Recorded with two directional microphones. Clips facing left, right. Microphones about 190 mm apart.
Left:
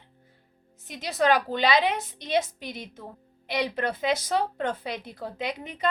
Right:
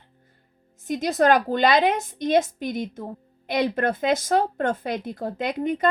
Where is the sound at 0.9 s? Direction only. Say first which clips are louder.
Right 5 dB; 45° right (ahead or behind).